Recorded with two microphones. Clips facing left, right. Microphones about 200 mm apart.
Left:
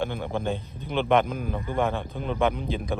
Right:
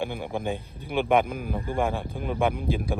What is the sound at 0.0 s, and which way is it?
A man's voice, 10° right (ahead or behind).